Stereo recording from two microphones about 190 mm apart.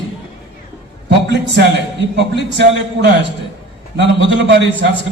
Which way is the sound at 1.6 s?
60° right (ahead or behind).